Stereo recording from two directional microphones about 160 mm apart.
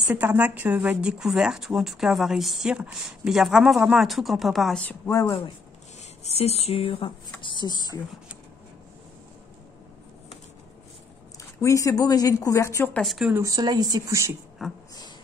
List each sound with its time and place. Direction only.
0.1 s speech: 10° right (ahead or behind); by 5.1 s 10° left (ahead or behind)
5.1 s speech: 20° left (ahead or behind)
6.2 s a sound: 40° left (ahead or behind)
7.4 s speech: 30° left (ahead or behind)
11.3 s speech: 20° left (ahead or behind)
13.0 s speech: centre (ahead or behind)
13.3 s speech: 20° right (ahead or behind)
14.6 s speech: centre (ahead or behind)